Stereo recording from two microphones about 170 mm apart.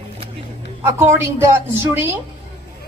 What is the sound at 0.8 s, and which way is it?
A woman's voice, 15° right (ahead or behind).